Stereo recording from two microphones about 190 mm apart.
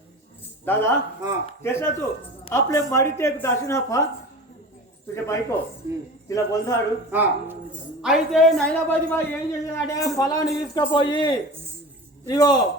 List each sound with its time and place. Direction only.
0.6 s a man's voice: 10° left (ahead or behind)
5.1 s a man's voice: 15° left (ahead or behind)
7.1 s a man's voice: 10° right (ahead or behind); by 12.5 s 20° left (ahead or behind)